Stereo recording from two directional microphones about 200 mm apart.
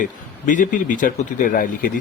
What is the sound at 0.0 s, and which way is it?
Speech, 40° left (ahead or behind).